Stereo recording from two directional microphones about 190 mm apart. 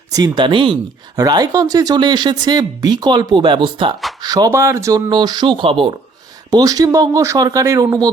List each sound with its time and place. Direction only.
0.1 s speech: 20° right (ahead or behind)